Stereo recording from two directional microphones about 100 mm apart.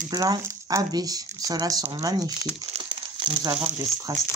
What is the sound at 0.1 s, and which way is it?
Speech, 35° right (ahead or behind).